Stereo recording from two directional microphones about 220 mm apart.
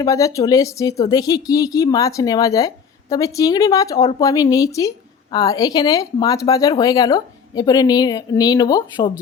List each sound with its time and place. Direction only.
0.0 s speech: 15° left (ahead or behind)